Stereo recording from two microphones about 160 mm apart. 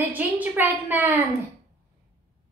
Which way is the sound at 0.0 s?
10° right (ahead or behind).